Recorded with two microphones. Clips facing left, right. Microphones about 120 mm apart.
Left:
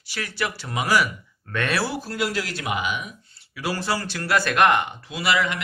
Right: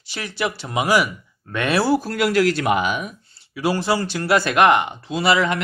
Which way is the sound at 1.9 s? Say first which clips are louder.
Right 8 dB; 50° right (ahead or behind).